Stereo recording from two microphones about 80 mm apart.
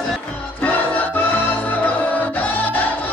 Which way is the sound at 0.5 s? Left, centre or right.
Centre.